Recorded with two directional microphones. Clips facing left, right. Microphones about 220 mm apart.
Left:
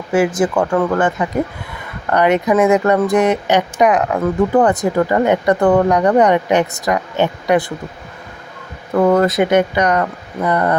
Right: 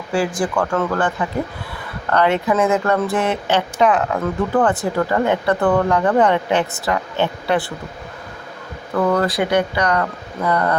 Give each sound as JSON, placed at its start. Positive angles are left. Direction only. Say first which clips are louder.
{"t": 0.1, "sound": "speech", "louder": "left 5 dB", "side_deg": 20}
{"t": 9.0, "sound": "speech", "louder": "left 5 dB", "side_deg": 25}